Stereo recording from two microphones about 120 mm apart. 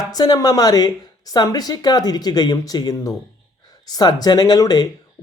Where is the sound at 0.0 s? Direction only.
35° left (ahead or behind).